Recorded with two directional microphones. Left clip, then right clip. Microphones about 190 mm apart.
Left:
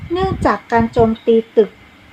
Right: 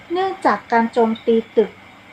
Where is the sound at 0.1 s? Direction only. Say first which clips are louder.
Left 2 dB; 35° left (ahead or behind).